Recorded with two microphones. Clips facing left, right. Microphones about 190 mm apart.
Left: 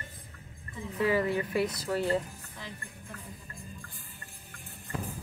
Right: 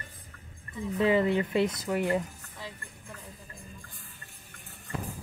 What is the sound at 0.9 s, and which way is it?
Speech, 20° right (ahead or behind).